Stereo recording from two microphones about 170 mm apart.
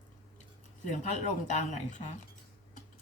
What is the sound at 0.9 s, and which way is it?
Speech, 45° left (ahead or behind).